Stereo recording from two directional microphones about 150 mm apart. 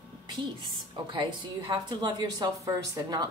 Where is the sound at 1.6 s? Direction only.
30° right (ahead or behind).